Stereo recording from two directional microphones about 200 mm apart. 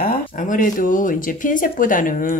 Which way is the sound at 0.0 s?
45° left (ahead or behind).